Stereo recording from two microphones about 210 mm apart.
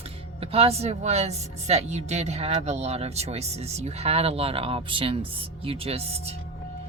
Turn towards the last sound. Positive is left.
turn(degrees=-30)  # may be behind; listen again after turning